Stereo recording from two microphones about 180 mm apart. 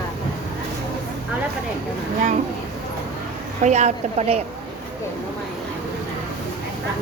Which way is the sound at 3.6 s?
40° right (ahead or behind).